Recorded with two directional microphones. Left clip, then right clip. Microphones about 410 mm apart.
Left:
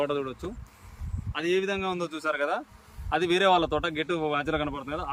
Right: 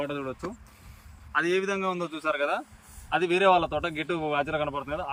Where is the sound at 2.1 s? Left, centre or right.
Left.